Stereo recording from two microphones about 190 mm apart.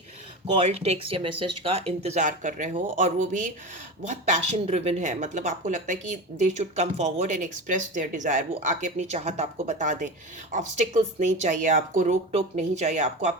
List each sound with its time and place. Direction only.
0.5 s speech: 30° right (ahead or behind)